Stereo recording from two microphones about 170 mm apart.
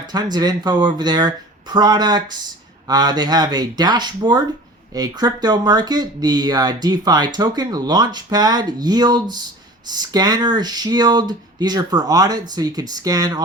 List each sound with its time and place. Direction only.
0.1 s speech: 25° right (ahead or behind)